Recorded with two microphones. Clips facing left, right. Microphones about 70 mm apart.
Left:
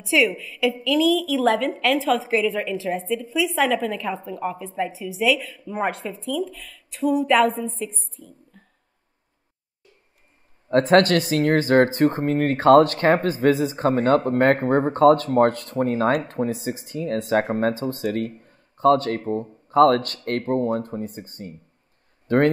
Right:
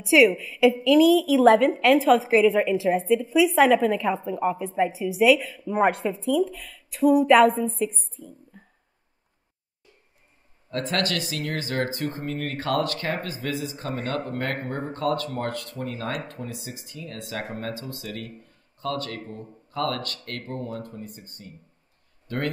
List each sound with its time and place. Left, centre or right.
0.0 s a woman's voice: centre
8.5 s a sound: centre
10.7 s speech: left